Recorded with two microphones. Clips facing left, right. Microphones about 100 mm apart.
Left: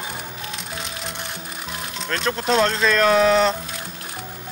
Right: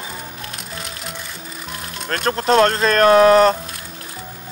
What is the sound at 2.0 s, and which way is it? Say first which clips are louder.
Speech: right 4 dB; 50° right (ahead or behind).